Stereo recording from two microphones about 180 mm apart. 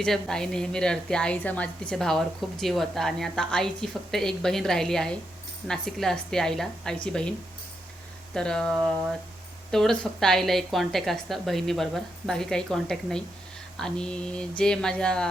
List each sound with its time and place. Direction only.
0.0 s a woman's voice: 5° left (ahead or behind)